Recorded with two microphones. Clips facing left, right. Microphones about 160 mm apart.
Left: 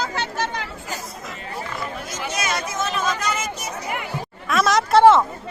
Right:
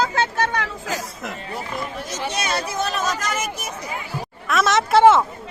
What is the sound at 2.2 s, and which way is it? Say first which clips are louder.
Chatter: right 1 dB; 30° right (ahead or behind).